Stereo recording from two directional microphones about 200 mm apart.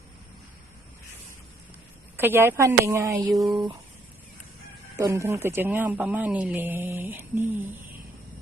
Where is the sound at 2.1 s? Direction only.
10° right (ahead or behind).